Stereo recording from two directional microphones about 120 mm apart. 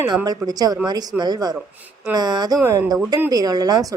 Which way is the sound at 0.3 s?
35° right (ahead or behind).